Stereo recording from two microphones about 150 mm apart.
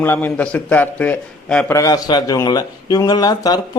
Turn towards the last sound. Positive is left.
turn(degrees=25)  # may be behind; listen again after turning